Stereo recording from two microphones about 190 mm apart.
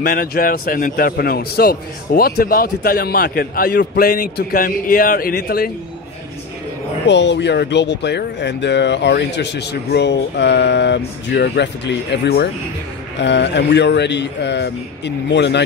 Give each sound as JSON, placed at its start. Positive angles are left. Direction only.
{"t": 0.0, "sound": "a man's voice", "side_deg": 50}
{"t": 7.1, "sound": "speech", "side_deg": 65}